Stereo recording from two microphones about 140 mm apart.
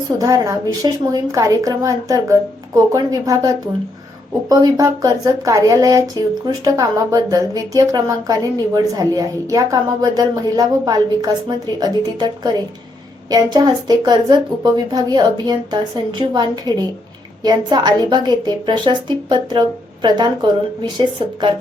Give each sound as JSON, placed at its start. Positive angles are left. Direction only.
{"t": 0.2, "sound": "a woman's voice", "side_deg": -25}